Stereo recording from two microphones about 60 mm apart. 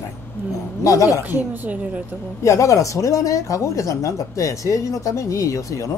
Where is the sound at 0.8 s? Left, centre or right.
Left.